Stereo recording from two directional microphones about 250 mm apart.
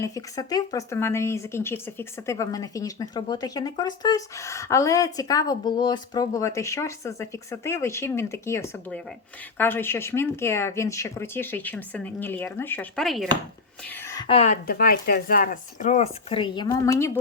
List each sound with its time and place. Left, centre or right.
0.0 s a woman's voice: centre